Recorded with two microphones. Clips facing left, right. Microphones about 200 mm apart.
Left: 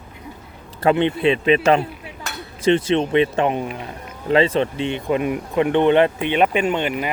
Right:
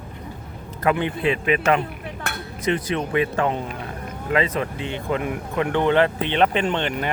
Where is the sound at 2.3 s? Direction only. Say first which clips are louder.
Right 1 dB; 60° right (ahead or behind).